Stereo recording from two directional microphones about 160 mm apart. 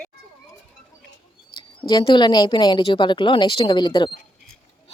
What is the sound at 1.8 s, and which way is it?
A woman's voice, 30° left (ahead or behind).